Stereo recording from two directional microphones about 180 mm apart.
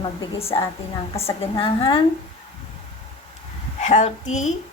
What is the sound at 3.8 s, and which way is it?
Speech, 40° left (ahead or behind).